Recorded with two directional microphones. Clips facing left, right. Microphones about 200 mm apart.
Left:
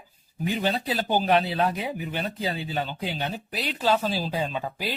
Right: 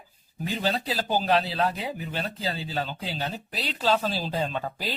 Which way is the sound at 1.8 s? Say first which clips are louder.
Left 2 dB; 15° left (ahead or behind).